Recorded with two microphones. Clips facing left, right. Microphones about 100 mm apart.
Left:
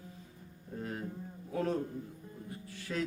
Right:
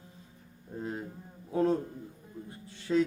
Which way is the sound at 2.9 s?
25° right (ahead or behind).